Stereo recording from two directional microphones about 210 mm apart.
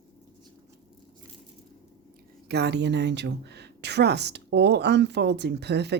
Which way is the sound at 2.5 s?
55° right (ahead or behind).